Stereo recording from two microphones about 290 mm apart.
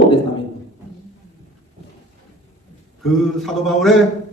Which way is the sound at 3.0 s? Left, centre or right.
Centre.